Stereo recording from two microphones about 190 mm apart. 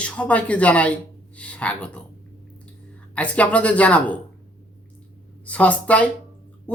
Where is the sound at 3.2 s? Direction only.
5° left (ahead or behind).